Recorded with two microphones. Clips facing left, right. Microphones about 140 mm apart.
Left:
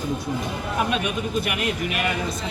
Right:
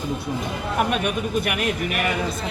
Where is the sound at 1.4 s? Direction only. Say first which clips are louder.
Right 2 dB; 50° right (ahead or behind).